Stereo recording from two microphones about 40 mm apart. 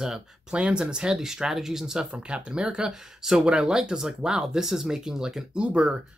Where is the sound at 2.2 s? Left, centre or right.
Right.